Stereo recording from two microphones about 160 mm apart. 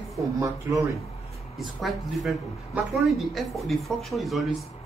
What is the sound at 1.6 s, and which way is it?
Speech, centre (ahead or behind).